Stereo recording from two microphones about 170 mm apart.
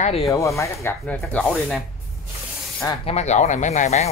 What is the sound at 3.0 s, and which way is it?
Speech, 40° left (ahead or behind).